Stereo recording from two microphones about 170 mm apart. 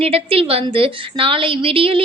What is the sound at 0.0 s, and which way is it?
A woman's voice, 35° right (ahead or behind).